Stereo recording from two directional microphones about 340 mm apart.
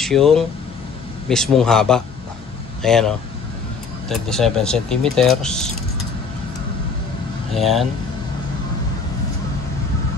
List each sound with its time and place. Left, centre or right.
0.0 s speech: centre
7.5 s speech: centre